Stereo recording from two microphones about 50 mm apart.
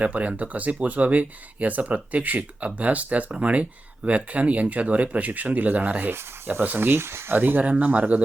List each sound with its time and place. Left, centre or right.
0.0 s speech: right
6.7 s speech: right
7.3 s speech: right